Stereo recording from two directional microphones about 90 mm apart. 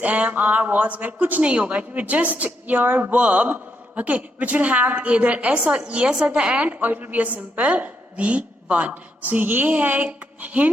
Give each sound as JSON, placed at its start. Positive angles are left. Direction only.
{"t": 0.0, "sound": "a woman's voice", "side_deg": -15}